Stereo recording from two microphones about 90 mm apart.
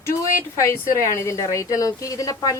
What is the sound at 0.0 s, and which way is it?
Speech, 30° left (ahead or behind).